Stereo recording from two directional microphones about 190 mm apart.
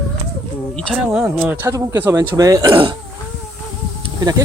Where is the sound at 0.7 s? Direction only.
Centre (ahead or behind); by 2.9 s 25° right (ahead or behind).